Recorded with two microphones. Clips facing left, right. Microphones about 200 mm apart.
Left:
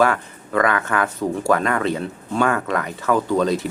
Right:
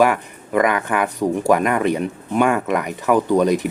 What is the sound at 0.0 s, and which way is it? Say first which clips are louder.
Speech: right 2 dB; 15° right (ahead or behind).